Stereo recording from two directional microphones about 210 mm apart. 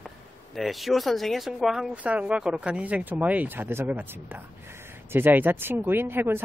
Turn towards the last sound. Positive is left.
turn(degrees=-10)  # may be behind; listen again after turning